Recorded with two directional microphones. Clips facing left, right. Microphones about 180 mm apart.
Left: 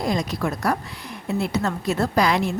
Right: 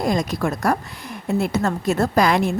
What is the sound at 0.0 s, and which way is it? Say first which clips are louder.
A woman's voice: right 3 dB; 45° right (ahead or behind).